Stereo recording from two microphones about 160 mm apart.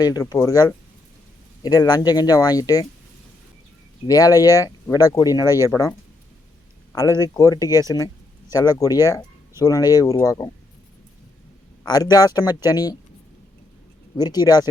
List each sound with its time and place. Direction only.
0.0 s speech: 25° left (ahead or behind)
4.0 s speech: 25° left (ahead or behind)
5.5 s speech: 15° right (ahead or behind)
7.2 s speech: 20° left (ahead or behind)
11.9 s speech: 25° left (ahead or behind)
14.2 s speech: 25° left (ahead or behind)